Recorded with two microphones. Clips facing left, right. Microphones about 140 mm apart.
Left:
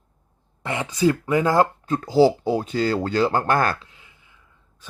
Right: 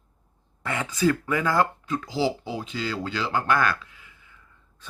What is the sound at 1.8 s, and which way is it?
Speech, 40° left (ahead or behind).